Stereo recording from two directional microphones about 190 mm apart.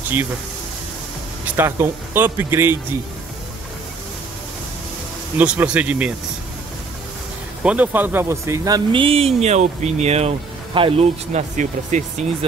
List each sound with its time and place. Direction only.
1.6 s speech: 10° right (ahead or behind)
5.4 s speech: 5° right (ahead or behind)
7.6 s speech: 10° right (ahead or behind); by 12.4 s 40° right (ahead or behind)